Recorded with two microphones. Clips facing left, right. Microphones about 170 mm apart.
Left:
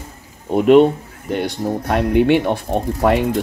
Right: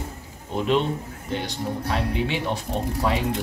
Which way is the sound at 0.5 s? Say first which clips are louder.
Left 12 dB; 55° left (ahead or behind).